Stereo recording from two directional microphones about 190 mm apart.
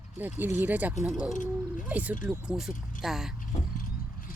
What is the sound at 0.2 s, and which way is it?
Speech, 10° right (ahead or behind).